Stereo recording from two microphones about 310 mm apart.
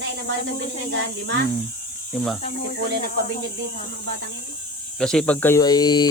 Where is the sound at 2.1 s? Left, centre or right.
Centre.